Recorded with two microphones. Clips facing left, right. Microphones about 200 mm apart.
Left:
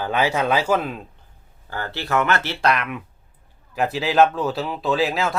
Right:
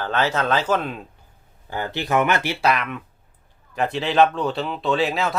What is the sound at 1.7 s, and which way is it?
Speech, 15° right (ahead or behind).